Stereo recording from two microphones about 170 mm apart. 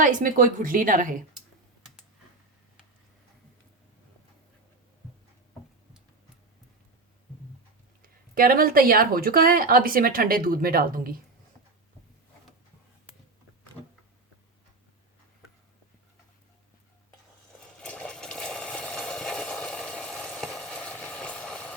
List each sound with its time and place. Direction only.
0.0 s a woman's voice: 50° right (ahead or behind)
8.4 s speech: 60° right (ahead or behind)
17.6 s a sound: 5° left (ahead or behind)